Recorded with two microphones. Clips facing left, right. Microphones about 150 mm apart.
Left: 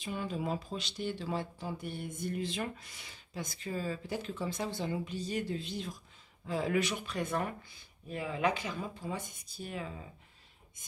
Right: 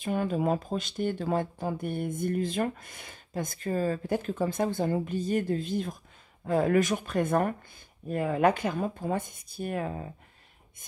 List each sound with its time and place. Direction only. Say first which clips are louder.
0.0 s speech: right 9 dB; 55° right (ahead or behind)